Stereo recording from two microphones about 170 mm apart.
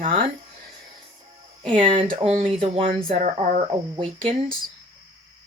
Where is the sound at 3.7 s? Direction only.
30° right (ahead or behind).